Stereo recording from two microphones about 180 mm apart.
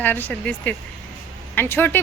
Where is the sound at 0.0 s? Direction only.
10° left (ahead or behind).